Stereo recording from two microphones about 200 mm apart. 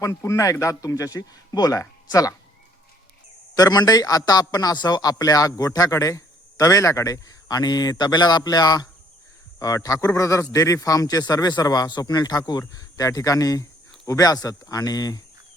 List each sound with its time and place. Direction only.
0.0 s a man's voice: 15° left (ahead or behind)
3.5 s a man's voice: 20° left (ahead or behind)